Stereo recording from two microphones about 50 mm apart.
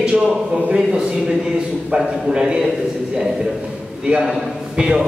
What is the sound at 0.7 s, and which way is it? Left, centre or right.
A man's voice, centre.